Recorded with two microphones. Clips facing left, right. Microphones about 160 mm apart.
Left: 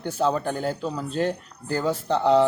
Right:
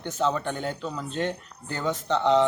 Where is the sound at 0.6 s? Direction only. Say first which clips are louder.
Left 4 dB; 5° left (ahead or behind).